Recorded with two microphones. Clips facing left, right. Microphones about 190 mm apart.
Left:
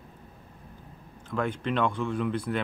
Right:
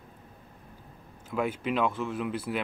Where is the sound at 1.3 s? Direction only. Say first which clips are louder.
Even; 5° right (ahead or behind).